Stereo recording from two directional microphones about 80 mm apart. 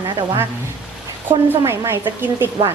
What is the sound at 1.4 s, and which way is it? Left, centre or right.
A woman's voice, right.